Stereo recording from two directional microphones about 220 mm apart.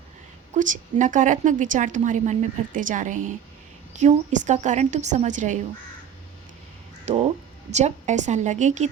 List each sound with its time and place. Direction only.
0.5 s a woman's voice: 35° right (ahead or behind)
7.0 s a woman's voice: 30° right (ahead or behind)